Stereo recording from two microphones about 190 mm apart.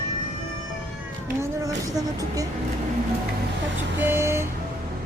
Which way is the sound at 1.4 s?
20° right (ahead or behind).